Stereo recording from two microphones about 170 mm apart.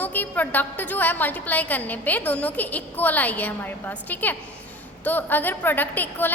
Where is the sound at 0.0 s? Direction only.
10° left (ahead or behind).